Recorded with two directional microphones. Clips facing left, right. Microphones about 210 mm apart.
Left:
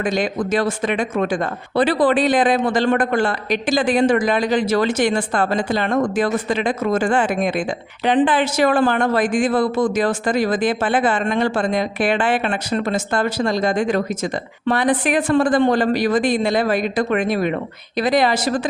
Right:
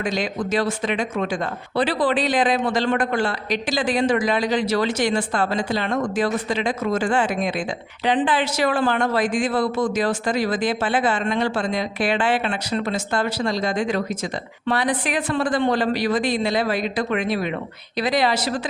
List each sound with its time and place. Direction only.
0.0 s speech: 50° left (ahead or behind)